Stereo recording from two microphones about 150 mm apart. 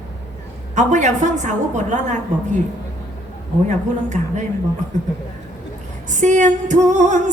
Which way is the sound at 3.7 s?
55° right (ahead or behind).